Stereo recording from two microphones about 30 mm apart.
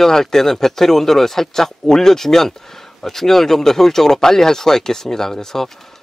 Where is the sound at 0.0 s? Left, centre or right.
Centre.